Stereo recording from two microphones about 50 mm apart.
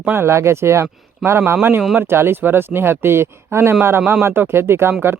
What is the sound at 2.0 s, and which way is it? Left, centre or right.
Speech, right.